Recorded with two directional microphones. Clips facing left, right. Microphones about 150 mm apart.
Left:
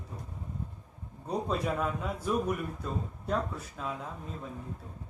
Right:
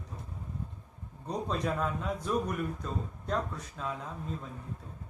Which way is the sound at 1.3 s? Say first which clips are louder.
Left 1 dB; 5° left (ahead or behind).